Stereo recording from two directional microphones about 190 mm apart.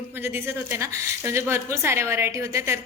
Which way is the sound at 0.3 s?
10° right (ahead or behind).